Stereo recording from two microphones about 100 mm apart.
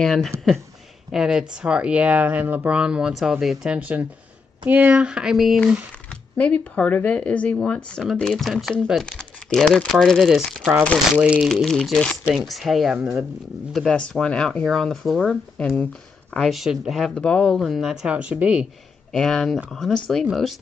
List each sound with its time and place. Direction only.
0.0 s speech: 5° left (ahead or behind)
6.0 s speech: 15° left (ahead or behind); by 11.4 s 10° right (ahead or behind)
11.4 s speech: 5° left (ahead or behind)
15.6 s speech: 15° left (ahead or behind)
16.3 s speech: centre (ahead or behind)
17.1 s speech: 10° left (ahead or behind)
17.6 s speech: 5° right (ahead or behind)
19.1 s speech: centre (ahead or behind)